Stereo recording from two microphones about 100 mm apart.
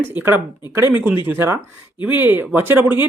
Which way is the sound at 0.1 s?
20° right (ahead or behind).